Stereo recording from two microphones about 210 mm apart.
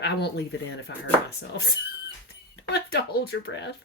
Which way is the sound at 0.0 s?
50° left (ahead or behind).